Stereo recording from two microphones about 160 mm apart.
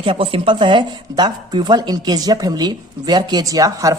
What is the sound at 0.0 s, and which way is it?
A woman's voice, 35° right (ahead or behind).